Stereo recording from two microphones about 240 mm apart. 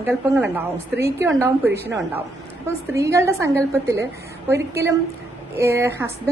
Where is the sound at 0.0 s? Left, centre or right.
Centre.